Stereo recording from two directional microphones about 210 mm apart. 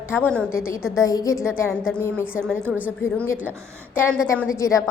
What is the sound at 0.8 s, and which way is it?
Speech, 5° right (ahead or behind).